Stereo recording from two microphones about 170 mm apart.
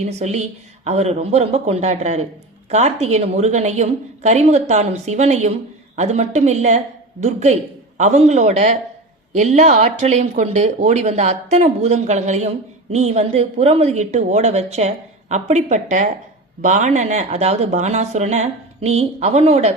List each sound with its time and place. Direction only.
0.0 s a woman's voice: 40° right (ahead or behind)